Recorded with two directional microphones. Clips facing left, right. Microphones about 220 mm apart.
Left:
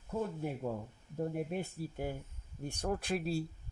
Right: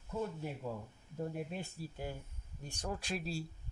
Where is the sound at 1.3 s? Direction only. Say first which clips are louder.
Left 5 dB; 55° left (ahead or behind).